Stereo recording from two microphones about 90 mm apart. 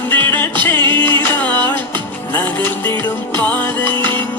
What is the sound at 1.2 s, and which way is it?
Music, 20° left (ahead or behind).